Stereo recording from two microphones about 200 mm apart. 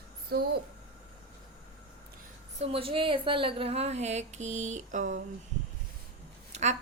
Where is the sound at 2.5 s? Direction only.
30° right (ahead or behind).